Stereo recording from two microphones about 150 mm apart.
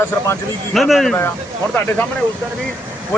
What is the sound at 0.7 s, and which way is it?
Speech, centre (ahead or behind).